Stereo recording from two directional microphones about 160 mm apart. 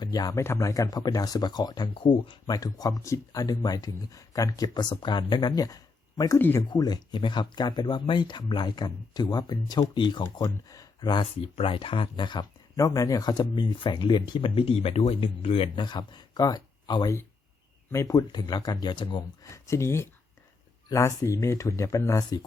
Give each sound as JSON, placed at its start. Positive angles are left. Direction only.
{"t": 0.0, "sound": "speech", "side_deg": 25}
{"t": 6.7, "sound": "speech", "side_deg": 25}